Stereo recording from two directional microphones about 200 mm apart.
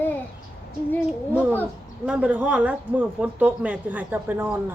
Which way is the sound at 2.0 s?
5° right (ahead or behind).